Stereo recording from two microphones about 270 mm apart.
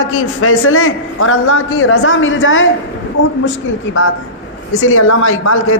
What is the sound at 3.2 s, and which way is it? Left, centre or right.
Speech, left.